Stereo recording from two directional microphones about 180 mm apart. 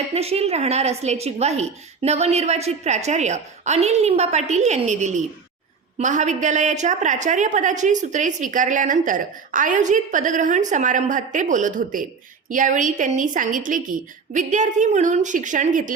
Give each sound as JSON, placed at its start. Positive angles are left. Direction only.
{"t": 0.1, "sound": "a woman's voice", "side_deg": -35}